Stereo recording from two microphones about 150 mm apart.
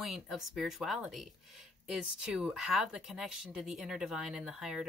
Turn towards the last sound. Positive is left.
turn(degrees=0)  # may be behind; listen again after turning